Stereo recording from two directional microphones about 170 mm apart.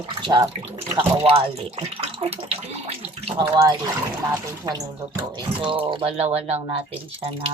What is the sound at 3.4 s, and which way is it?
Speech, 20° right (ahead or behind).